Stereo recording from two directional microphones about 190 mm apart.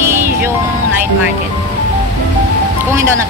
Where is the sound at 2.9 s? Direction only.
15° right (ahead or behind).